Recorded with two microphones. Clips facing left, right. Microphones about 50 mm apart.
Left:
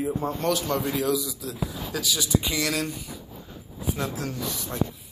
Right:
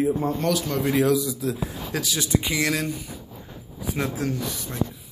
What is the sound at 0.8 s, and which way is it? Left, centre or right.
Speech, right.